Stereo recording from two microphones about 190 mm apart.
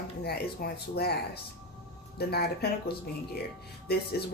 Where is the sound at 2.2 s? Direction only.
55° left (ahead or behind).